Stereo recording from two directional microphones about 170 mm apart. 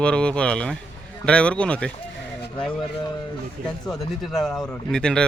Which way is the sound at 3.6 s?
55° right (ahead or behind).